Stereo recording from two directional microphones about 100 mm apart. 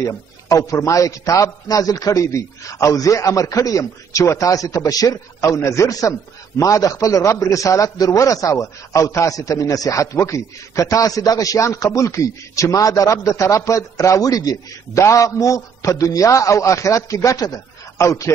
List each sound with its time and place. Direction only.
0.1 s a man's voice: 35° left (ahead or behind)